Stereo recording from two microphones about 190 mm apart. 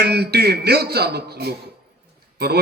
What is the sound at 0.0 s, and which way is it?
A man's voice, 60° right (ahead or behind).